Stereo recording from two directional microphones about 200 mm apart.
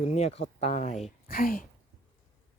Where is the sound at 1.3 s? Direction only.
45° left (ahead or behind).